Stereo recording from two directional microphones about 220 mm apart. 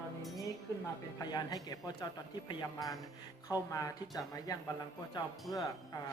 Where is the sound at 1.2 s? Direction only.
15° left (ahead or behind).